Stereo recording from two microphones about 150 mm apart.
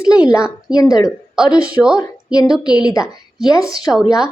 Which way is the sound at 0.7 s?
25° left (ahead or behind).